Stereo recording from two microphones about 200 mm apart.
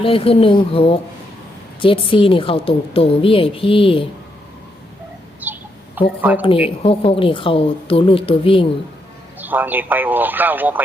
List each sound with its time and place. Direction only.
0.0 s a woman's voice: 30° left (ahead or behind)
5.4 s a sound: 10° right (ahead or behind)
6.0 s speech: 10° right (ahead or behind)
6.4 s a woman's voice: 25° left (ahead or behind)
9.4 s speech: 10° right (ahead or behind)